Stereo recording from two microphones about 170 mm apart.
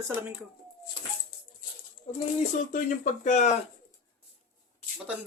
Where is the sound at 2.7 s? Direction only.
50° left (ahead or behind).